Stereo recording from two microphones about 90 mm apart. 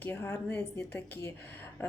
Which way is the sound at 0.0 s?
25° left (ahead or behind).